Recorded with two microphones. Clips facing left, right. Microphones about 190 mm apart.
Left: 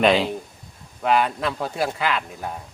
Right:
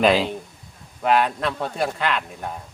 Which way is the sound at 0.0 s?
Centre (ahead or behind).